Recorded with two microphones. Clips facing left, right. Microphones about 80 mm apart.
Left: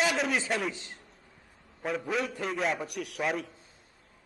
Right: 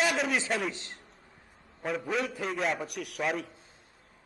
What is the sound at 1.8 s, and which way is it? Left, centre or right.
A man's voice, centre.